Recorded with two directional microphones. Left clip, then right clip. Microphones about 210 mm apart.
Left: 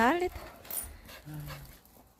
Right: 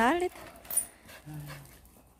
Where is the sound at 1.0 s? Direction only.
5° right (ahead or behind).